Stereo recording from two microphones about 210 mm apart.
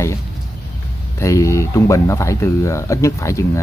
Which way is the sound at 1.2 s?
15° left (ahead or behind).